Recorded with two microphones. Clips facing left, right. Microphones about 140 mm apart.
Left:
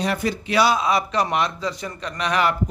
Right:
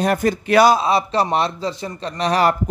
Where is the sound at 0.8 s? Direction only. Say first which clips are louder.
Right 3 dB; 30° right (ahead or behind).